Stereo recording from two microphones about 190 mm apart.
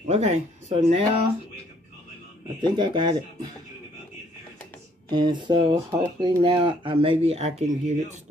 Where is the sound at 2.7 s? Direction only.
25° right (ahead or behind).